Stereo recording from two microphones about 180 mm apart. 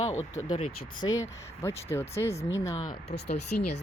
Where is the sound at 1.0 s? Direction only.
15° left (ahead or behind).